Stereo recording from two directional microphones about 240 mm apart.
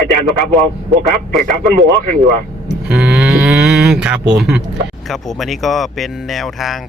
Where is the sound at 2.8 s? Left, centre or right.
Centre.